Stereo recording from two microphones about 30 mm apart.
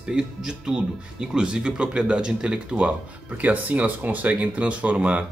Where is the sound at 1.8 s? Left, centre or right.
Right.